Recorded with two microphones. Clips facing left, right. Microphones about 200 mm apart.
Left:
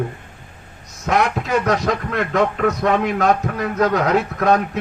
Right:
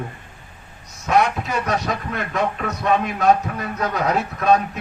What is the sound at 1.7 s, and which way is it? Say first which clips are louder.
Speech: left 4 dB; 90° left.